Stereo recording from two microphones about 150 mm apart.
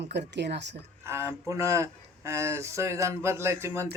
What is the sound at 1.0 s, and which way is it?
Speech, 15° right (ahead or behind).